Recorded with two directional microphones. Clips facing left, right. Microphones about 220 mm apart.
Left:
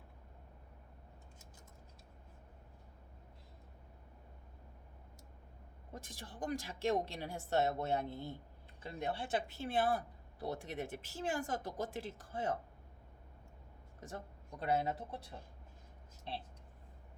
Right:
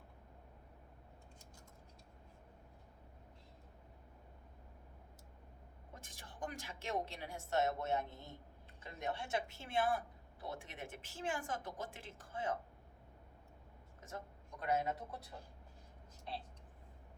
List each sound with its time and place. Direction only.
5.9 s a woman's voice: 35° left (ahead or behind)
14.6 s a woman's voice: 35° left (ahead or behind)